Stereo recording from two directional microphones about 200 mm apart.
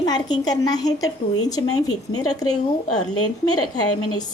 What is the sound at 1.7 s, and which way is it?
Speech, 90° left.